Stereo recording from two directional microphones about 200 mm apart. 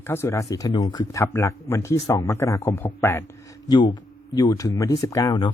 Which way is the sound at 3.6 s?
20° left (ahead or behind).